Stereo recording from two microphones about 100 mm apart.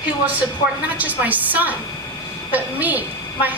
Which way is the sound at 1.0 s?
15° right (ahead or behind).